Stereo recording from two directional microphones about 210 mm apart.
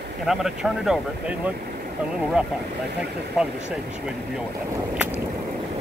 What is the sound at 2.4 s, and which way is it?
Speech, 5° right (ahead or behind).